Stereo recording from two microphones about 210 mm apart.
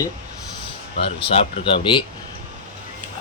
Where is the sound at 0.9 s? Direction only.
25° left (ahead or behind).